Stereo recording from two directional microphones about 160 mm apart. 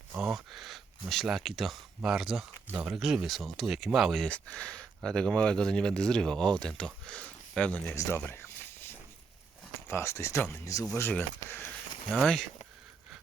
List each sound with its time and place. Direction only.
0.1 s speech: 5° right (ahead or behind)
7.9 s a sound: 15° left (ahead or behind)
9.9 s speech: 15° left (ahead or behind)
12.1 s speech: centre (ahead or behind)